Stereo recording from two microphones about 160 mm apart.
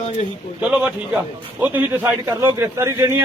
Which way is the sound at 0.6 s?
5° right (ahead or behind).